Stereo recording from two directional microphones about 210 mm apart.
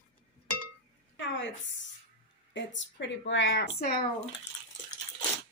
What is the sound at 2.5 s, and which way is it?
Speech, 60° left (ahead or behind).